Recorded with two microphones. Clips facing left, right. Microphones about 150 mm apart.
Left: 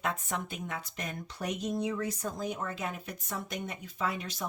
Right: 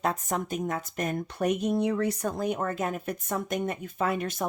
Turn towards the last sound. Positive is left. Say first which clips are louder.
# right 6 dB
turn(degrees=-55)  # may be behind; listen again after turning